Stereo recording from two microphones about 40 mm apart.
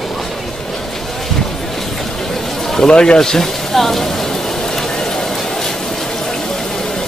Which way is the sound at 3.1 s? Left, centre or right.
Centre.